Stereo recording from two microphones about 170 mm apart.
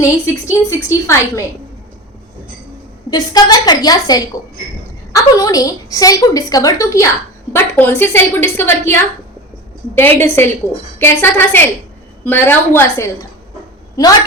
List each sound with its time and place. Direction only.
0.5 s a woman's voice: 15° left (ahead or behind)
3.1 s a woman's voice: 25° left (ahead or behind)